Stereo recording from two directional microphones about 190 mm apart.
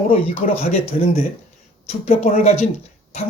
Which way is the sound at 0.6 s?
35° left (ahead or behind).